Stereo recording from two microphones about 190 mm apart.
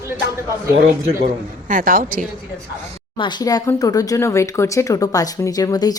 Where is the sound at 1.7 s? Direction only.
45° right (ahead or behind).